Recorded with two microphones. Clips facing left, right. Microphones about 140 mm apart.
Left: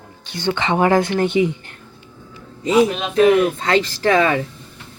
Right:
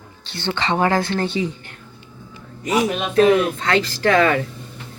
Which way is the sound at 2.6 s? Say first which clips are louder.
Left 4 dB; 25° left (ahead or behind).